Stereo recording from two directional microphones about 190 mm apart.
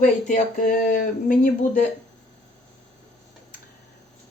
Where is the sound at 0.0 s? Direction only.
40° left (ahead or behind).